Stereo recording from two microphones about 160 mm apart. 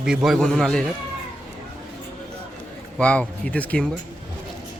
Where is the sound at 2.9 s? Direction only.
5° left (ahead or behind).